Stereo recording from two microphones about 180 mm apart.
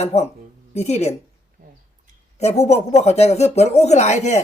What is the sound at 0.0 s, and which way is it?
Speech, 35° left (ahead or behind).